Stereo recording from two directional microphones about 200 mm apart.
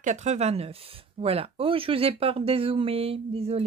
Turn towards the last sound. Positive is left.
turn(degrees=-30)  # may be behind; listen again after turning